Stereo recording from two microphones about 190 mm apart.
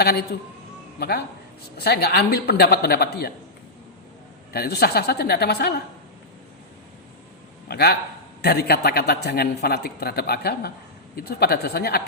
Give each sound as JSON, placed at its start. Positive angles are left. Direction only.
{"t": 0.0, "sound": "a man's voice", "side_deg": 55}
{"t": 4.5, "sound": "a man's voice", "side_deg": 55}
{"t": 7.7, "sound": "a man's voice", "side_deg": 55}